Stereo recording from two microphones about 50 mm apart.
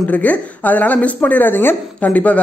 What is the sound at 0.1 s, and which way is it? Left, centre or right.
A man's voice, left.